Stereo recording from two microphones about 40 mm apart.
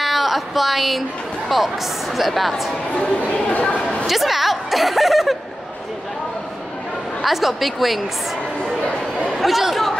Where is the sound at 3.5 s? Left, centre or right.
Left.